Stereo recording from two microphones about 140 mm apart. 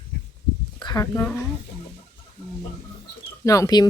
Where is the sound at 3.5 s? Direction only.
25° left (ahead or behind).